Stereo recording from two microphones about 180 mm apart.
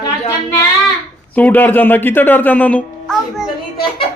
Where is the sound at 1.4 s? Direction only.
10° left (ahead or behind).